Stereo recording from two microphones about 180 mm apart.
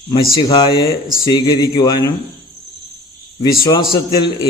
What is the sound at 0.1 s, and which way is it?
A man's voice, 25° left (ahead or behind).